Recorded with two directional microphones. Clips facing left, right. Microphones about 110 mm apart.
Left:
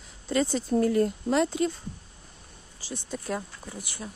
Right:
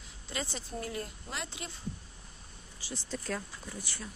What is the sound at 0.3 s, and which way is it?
Speech, 45° left (ahead or behind).